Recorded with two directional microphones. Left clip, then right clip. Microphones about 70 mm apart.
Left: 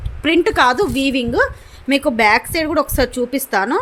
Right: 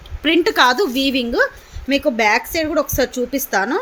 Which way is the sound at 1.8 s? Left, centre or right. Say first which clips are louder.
Left 2 dB; left.